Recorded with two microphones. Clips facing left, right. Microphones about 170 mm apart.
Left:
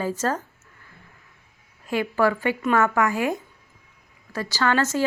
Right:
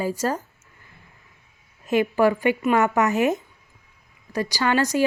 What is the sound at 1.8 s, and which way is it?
Speech, 20° right (ahead or behind).